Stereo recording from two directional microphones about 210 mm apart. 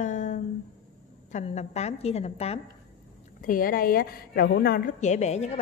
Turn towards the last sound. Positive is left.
turn(degrees=30)  # may be behind; listen again after turning